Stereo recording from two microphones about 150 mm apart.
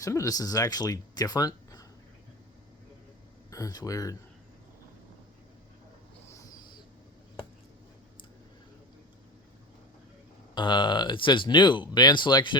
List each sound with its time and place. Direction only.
0.0 s speech: 20° left (ahead or behind)
3.5 s speech: 25° left (ahead or behind)
10.5 s speech: 30° left (ahead or behind)